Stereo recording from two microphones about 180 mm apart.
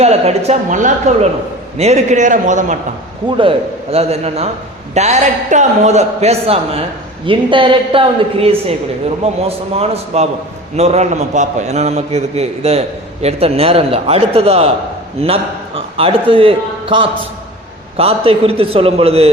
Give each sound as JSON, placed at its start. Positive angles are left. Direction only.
{"t": 0.0, "sound": "a woman's voice", "side_deg": -35}
{"t": 3.2, "sound": "a man's voice", "side_deg": -25}